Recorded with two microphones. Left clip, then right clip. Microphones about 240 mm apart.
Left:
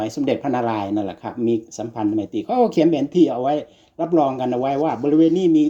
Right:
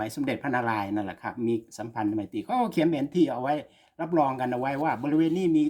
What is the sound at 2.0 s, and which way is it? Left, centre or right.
Speech, right.